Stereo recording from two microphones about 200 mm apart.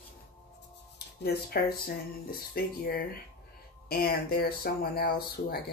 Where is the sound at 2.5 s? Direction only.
50° left (ahead or behind).